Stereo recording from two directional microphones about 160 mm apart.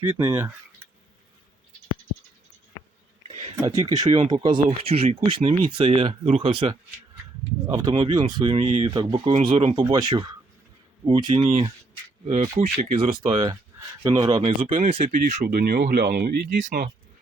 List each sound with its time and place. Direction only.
0.0 s speech: 15° right (ahead or behind)
3.5 s speech: 20° right (ahead or behind)
11.4 s speech: 40° right (ahead or behind)
12.9 s speech: 35° right (ahead or behind)
15.1 s speech: 50° right (ahead or behind)
15.4 s speech: 65° right (ahead or behind)
16.6 s speech: 55° right (ahead or behind)